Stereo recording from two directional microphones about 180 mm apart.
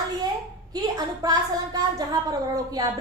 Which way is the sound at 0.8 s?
20° right (ahead or behind).